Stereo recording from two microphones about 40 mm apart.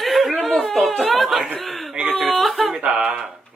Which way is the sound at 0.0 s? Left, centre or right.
Centre.